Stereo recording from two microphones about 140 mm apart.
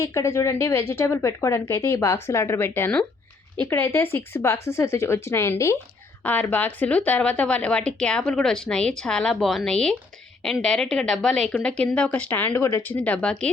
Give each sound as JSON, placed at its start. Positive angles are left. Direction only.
{"t": 0.0, "sound": "a woman's voice", "side_deg": 20}